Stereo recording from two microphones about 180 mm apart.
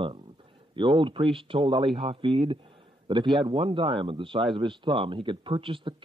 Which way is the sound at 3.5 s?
30° right (ahead or behind).